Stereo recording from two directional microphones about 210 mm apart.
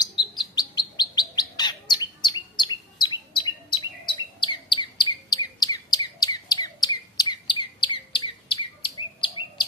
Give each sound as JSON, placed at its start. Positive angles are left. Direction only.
{"t": 0.3, "sound": "chirp", "side_deg": 20}